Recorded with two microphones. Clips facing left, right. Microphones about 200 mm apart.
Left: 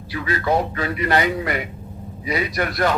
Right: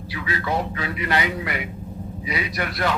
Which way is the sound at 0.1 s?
45° left (ahead or behind).